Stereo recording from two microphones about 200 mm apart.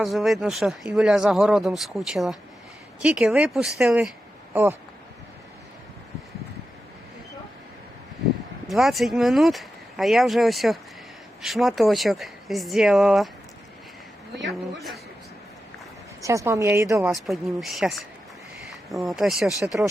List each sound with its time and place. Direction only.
0.0 s speech: centre (ahead or behind)
8.6 s speech: centre (ahead or behind)
14.3 s speech: centre (ahead or behind)
16.2 s speech: 15° right (ahead or behind)
17.2 s speech: centre (ahead or behind)